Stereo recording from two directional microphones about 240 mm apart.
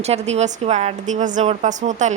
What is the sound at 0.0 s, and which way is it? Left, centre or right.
A woman's voice, right.